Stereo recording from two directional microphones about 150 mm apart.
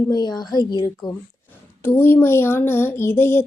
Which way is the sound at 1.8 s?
15° left (ahead or behind).